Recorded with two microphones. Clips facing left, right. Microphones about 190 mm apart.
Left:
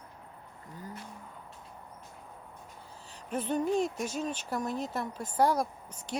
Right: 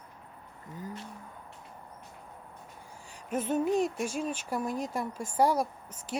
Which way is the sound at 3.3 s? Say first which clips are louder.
Right 2 dB; 5° right (ahead or behind).